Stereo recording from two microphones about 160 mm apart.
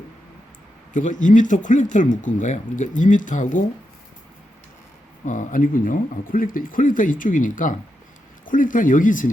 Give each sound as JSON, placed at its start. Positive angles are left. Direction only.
{"t": 0.9, "sound": "speech", "side_deg": 55}
{"t": 5.2, "sound": "speech", "side_deg": 55}